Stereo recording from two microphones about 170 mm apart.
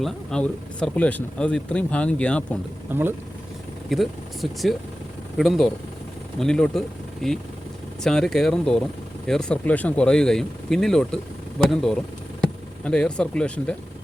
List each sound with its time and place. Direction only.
0.0 s speech: 5° left (ahead or behind)
2.9 s speech: 15° right (ahead or behind)
3.8 s speech: centre (ahead or behind)